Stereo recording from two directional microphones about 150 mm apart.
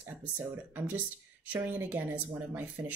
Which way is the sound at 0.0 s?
15° right (ahead or behind).